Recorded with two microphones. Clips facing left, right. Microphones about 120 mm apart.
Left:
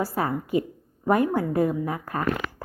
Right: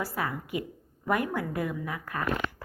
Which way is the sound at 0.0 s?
35° left (ahead or behind).